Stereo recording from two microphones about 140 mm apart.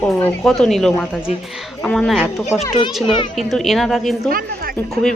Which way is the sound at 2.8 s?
35° left (ahead or behind).